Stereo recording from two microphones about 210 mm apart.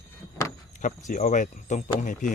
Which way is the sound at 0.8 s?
40° left (ahead or behind).